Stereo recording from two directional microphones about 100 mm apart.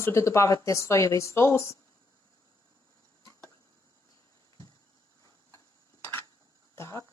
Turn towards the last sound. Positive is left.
turn(degrees=30)  # may be behind; listen again after turning